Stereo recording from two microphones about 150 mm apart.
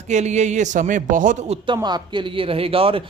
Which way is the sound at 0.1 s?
50° right (ahead or behind).